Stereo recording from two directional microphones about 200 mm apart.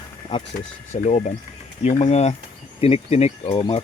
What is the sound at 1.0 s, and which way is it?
Speech, 35° left (ahead or behind).